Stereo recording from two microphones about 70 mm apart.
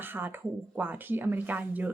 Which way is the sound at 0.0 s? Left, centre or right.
Right.